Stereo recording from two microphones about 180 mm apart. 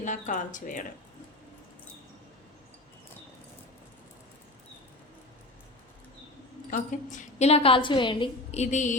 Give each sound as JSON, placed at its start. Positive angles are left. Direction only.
{"t": 0.0, "sound": "speech", "side_deg": 45}
{"t": 6.7, "sound": "a woman's voice", "side_deg": 45}
{"t": 8.6, "sound": "a woman's voice", "side_deg": 40}